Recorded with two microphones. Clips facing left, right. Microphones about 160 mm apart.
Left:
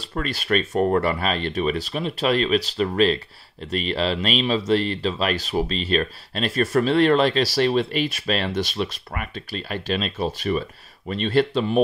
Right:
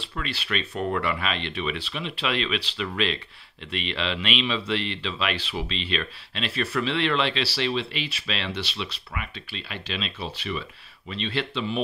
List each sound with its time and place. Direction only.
0.0 s speech: 45° left (ahead or behind)